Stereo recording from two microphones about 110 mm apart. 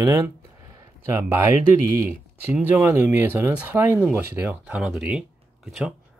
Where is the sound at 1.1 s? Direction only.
20° right (ahead or behind).